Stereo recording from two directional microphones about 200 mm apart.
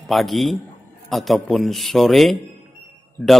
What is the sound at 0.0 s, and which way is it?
A man's voice, centre (ahead or behind).